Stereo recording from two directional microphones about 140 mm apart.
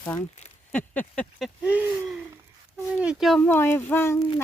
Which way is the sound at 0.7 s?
10° left (ahead or behind).